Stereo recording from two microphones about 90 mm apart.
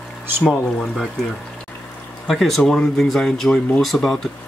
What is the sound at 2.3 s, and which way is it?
Speech, centre (ahead or behind).